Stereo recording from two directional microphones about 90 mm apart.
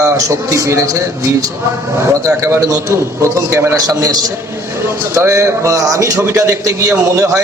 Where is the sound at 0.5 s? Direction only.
35° right (ahead or behind).